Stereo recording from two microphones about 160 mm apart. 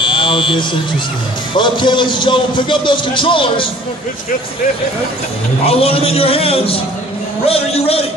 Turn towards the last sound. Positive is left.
turn(degrees=40)  # may be behind; listen again after turning